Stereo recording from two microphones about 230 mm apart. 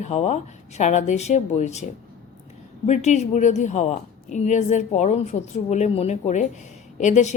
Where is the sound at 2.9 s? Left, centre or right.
Left.